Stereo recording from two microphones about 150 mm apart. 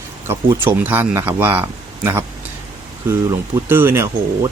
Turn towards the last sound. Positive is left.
turn(degrees=-15)  # may be behind; listen again after turning